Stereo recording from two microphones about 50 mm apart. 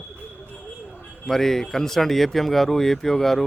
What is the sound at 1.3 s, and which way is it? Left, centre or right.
Speech, centre.